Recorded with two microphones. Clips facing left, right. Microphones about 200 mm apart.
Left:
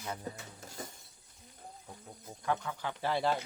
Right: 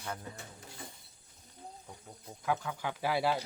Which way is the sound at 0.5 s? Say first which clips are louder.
Left 4 dB; 45° left (ahead or behind).